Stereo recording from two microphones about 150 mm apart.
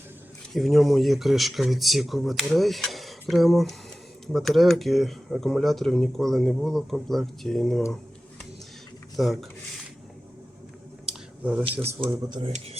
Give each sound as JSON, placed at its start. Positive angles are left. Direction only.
{"t": 0.5, "sound": "speech", "side_deg": 0}
{"t": 9.1, "sound": "speech", "side_deg": 0}
{"t": 11.0, "sound": "a sound", "side_deg": -5}
{"t": 12.1, "sound": "speech", "side_deg": -30}